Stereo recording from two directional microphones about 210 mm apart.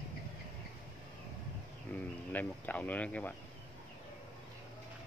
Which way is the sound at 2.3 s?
10° left (ahead or behind).